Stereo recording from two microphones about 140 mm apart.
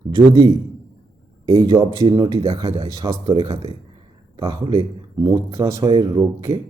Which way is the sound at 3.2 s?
40° right (ahead or behind).